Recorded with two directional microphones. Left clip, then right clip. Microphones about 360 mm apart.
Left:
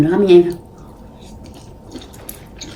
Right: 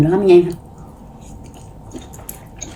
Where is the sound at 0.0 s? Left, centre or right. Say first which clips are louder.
Left 1 dB; centre.